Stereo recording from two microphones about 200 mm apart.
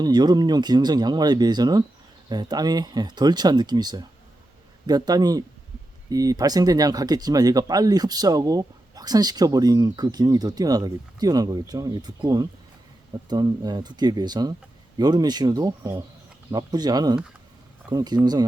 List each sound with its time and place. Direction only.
0.0 s speech: 20° right (ahead or behind)